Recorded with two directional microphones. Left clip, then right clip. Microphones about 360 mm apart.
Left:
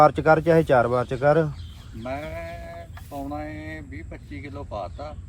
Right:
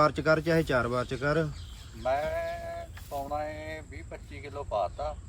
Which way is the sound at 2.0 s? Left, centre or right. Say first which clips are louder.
Right 3 dB; centre.